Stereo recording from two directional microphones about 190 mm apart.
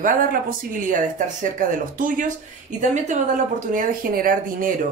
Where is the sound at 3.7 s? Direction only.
50° right (ahead or behind).